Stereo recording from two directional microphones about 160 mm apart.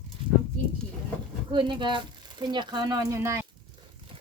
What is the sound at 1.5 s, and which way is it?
Speech, 30° right (ahead or behind).